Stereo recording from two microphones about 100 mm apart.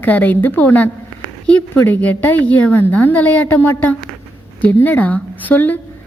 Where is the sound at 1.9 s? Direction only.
20° left (ahead or behind).